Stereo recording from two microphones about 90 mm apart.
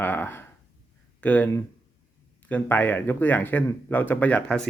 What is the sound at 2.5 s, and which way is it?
A man's voice, 20° left (ahead or behind).